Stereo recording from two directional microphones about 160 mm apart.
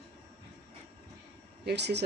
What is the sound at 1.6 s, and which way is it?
Speech, 90° right.